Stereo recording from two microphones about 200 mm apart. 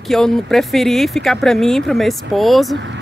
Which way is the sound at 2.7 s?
60° right (ahead or behind).